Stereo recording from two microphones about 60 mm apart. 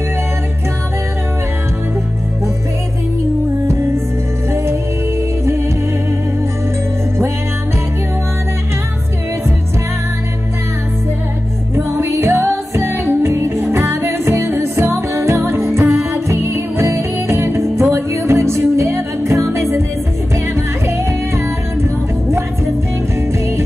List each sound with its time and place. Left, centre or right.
11.7 s music: right